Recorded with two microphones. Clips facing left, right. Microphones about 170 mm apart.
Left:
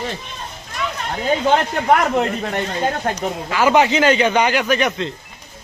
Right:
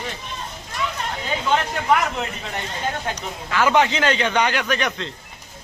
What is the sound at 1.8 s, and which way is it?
Speech, 50° left (ahead or behind).